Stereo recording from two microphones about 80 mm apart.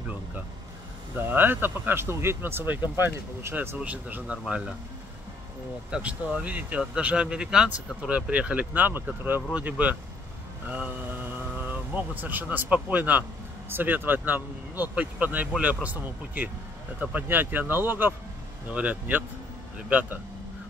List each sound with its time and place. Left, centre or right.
1.3 s speech: right
3.8 s speech: centre
5.9 s speech: centre
10.7 s mantra: right
11.9 s speech: right